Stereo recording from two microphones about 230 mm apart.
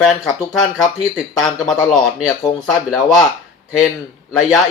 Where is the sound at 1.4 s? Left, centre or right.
Centre.